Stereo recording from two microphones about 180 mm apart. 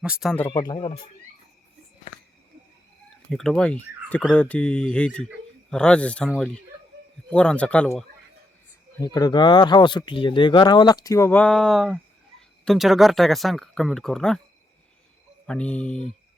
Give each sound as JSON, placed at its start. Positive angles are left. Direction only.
{"t": 0.0, "sound": "speech", "side_deg": -5}
{"t": 0.4, "sound": "speech", "side_deg": 25}
{"t": 3.2, "sound": "speech", "side_deg": 0}
{"t": 9.0, "sound": "speech", "side_deg": 20}
{"t": 15.4, "sound": "speech", "side_deg": 5}